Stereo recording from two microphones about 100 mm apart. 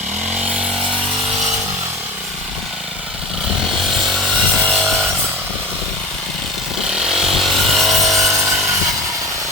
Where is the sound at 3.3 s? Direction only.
5° right (ahead or behind).